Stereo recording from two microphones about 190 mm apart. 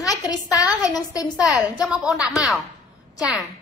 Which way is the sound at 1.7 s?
5° right (ahead or behind).